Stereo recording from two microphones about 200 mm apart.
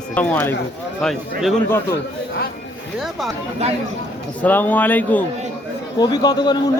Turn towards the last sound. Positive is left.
turn(degrees=20)  # may be behind; listen again after turning